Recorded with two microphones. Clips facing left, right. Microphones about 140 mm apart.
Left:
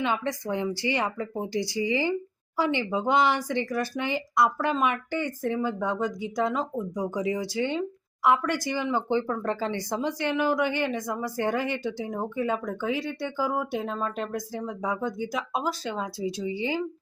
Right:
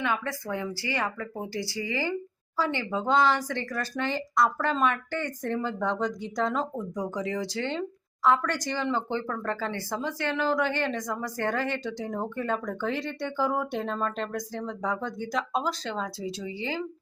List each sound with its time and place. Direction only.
0.0 s a woman's voice: 20° left (ahead or behind)